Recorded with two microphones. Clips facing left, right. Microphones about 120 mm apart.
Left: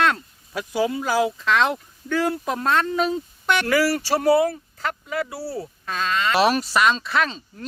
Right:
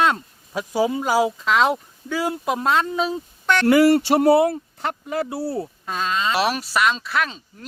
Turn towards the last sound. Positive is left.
turn(degrees=-5)  # may be behind; listen again after turning